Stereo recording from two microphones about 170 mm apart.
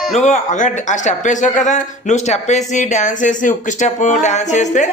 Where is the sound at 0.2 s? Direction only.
45° left (ahead or behind).